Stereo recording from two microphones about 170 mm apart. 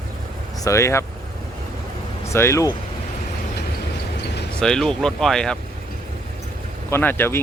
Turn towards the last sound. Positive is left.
turn(degrees=10)  # may be behind; listen again after turning